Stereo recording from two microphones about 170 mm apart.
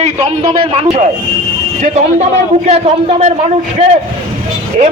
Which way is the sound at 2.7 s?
35° right (ahead or behind).